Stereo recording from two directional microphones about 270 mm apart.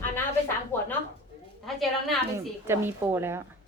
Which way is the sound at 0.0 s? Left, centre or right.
Centre.